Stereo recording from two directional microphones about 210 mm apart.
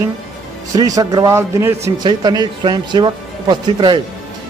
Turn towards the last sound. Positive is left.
turn(degrees=-20)  # may be behind; listen again after turning